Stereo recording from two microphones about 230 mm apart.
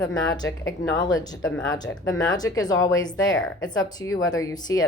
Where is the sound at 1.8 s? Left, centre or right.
Left.